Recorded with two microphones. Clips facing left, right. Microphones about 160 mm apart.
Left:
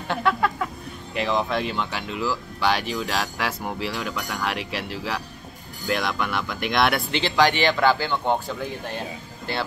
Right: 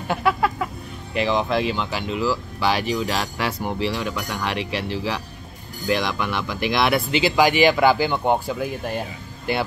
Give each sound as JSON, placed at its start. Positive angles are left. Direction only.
{"t": 0.1, "sound": "speech", "side_deg": -10}